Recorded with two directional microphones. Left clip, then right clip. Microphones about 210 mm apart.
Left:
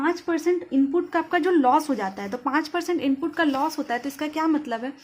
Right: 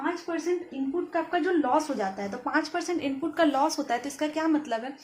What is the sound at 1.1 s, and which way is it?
A woman's voice, 35° left (ahead or behind).